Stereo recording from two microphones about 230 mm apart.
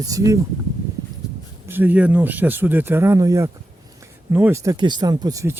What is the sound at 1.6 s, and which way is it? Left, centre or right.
Speech, centre.